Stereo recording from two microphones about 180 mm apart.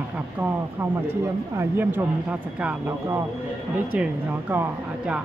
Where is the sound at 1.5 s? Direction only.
10° right (ahead or behind).